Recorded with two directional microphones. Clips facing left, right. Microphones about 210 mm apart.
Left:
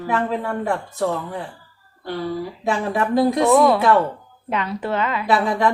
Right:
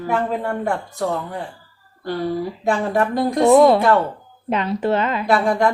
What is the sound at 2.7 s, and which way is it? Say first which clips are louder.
Speech: right 1 dB; centre (ahead or behind).